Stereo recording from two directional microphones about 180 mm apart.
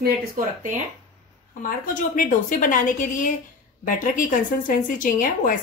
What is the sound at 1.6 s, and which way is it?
A woman's voice, 50° left (ahead or behind).